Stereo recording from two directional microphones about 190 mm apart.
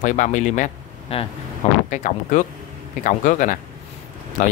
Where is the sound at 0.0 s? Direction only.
40° left (ahead or behind).